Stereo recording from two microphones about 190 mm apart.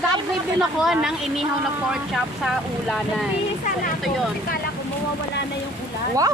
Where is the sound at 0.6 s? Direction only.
5° right (ahead or behind).